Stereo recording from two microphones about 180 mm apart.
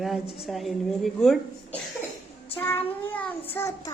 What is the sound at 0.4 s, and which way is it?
A woman's voice, centre (ahead or behind).